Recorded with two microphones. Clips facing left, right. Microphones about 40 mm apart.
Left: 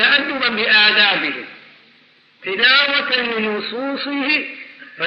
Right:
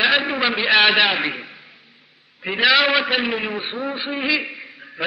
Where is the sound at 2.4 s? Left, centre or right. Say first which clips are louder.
Left 2 dB; centre.